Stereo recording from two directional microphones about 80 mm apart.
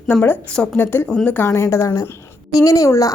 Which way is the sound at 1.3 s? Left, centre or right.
Left.